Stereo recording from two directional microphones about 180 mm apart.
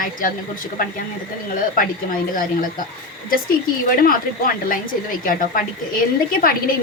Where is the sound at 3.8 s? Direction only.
50° left (ahead or behind).